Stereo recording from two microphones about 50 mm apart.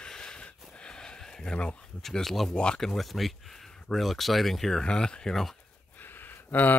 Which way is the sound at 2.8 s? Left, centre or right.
Centre.